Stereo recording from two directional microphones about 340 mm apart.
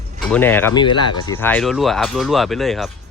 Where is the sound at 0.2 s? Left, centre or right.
Centre.